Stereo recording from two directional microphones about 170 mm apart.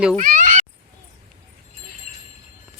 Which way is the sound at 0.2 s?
50° right (ahead or behind).